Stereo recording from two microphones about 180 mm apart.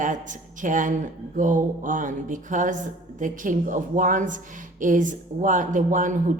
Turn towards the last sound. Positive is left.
turn(degrees=-45)  # may be behind; listen again after turning